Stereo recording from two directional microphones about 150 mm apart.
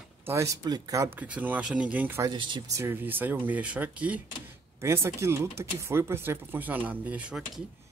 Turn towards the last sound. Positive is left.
turn(degrees=-5)  # may be behind; listen again after turning